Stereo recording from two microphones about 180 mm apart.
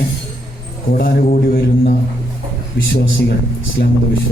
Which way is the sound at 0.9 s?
55° left (ahead or behind).